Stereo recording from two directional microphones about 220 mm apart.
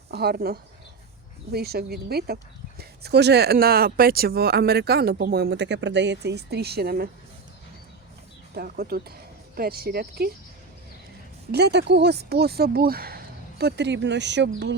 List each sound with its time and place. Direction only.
0.1 s speech: 45° right (ahead or behind)
8.5 s speech: 45° right (ahead or behind)
11.5 s speech: 50° right (ahead or behind)